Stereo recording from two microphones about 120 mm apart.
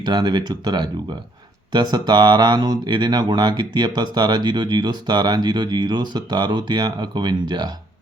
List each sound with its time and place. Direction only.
0.0 s speech: 40° right (ahead or behind)